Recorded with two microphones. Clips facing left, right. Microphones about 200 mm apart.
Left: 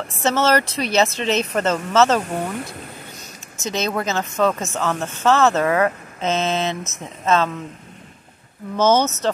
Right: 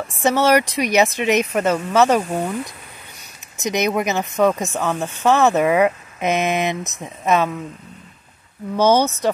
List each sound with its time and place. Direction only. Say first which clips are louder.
0.0 s speech: right 2 dB; 15° right (ahead or behind)
8.7 s speech: right 1 dB; 15° right (ahead or behind)